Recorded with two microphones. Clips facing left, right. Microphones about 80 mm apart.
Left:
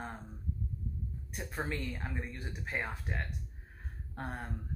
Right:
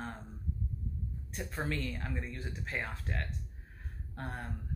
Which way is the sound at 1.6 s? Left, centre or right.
Centre.